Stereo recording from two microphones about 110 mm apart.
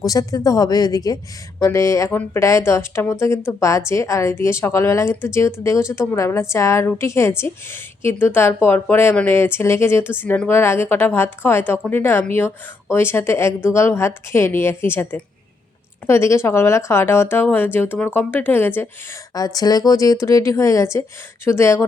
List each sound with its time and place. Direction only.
0.0 s speech: 30° left (ahead or behind)
19.3 s speech: 35° left (ahead or behind)